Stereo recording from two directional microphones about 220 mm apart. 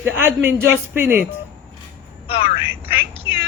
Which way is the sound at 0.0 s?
10° right (ahead or behind).